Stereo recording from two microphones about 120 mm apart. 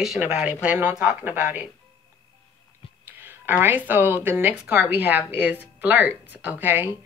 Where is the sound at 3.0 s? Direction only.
15° right (ahead or behind).